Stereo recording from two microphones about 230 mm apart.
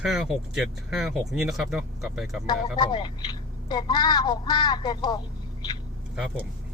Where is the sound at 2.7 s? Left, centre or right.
Left.